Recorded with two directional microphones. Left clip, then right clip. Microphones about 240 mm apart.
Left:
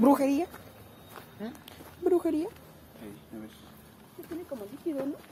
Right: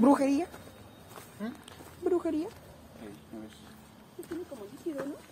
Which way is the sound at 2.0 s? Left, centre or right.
Centre.